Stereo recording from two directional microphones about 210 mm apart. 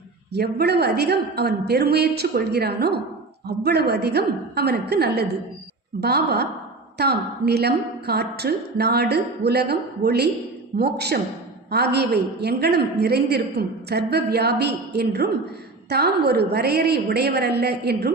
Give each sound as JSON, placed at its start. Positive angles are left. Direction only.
{"t": 0.3, "sound": "a woman's voice", "side_deg": -50}